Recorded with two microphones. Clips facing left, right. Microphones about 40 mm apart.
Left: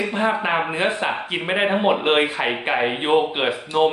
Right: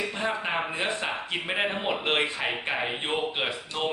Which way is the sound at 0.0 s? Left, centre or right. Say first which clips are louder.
Left 8 dB; left.